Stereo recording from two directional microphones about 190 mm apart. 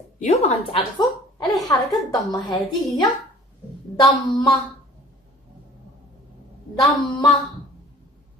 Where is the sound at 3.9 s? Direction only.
20° left (ahead or behind).